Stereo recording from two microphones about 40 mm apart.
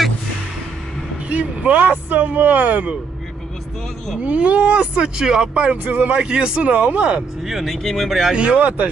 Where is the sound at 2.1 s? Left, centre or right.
Right.